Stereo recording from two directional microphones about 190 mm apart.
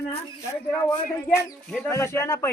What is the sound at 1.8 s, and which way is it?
Speech, 15° left (ahead or behind).